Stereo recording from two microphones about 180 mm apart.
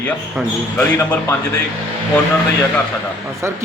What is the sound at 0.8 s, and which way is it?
Speech, 10° left (ahead or behind).